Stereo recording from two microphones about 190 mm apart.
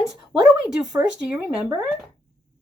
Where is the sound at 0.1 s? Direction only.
5° right (ahead or behind).